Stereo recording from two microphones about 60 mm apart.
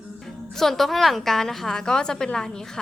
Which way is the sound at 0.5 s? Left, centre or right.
Centre.